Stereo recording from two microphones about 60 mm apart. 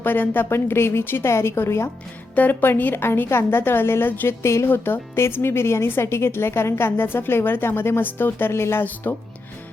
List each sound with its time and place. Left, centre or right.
0.0 s a woman's voice: left
2.3 s a woman's voice: left